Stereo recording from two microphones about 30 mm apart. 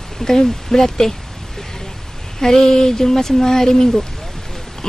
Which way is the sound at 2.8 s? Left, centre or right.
Centre.